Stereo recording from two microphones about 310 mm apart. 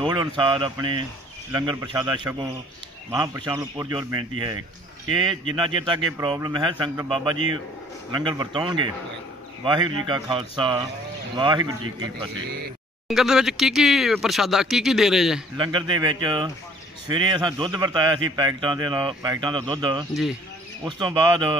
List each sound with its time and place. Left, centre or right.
0.0 s a sound: centre
0.5 s a man's voice: centre
5.3 s a man's voice: centre
12.4 s speech: right
13.1 s speech: centre
15.5 s a man's voice: centre